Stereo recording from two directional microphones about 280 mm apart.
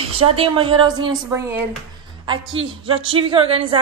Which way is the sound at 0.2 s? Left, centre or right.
Centre.